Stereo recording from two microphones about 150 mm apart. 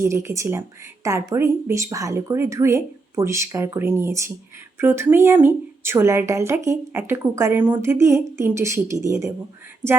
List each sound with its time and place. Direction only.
0.0 s speech: 20° right (ahead or behind)